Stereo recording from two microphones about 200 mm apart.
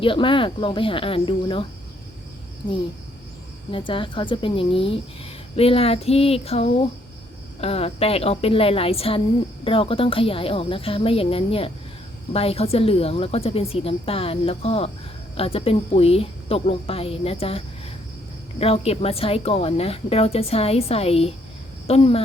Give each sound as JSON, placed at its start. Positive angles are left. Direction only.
{"t": 0.0, "sound": "speech", "side_deg": 25}
{"t": 3.7, "sound": "speech", "side_deg": 25}